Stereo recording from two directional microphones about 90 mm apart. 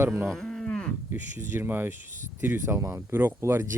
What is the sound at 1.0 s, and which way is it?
Speech, 25° right (ahead or behind).